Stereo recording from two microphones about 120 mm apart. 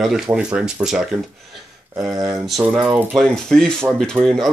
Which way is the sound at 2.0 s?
30° right (ahead or behind).